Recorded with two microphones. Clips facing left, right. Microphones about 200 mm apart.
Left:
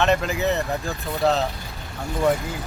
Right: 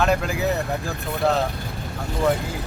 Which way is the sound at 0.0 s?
Centre (ahead or behind).